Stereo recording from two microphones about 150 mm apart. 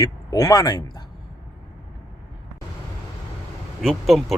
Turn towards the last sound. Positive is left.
turn(degrees=0)  # may be behind; listen again after turning